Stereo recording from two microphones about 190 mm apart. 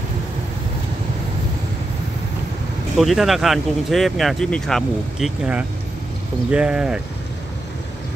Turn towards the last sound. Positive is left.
turn(degrees=-5)  # may be behind; listen again after turning